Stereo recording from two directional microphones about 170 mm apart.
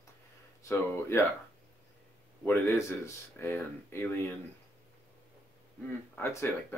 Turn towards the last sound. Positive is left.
turn(degrees=15)  # may be behind; listen again after turning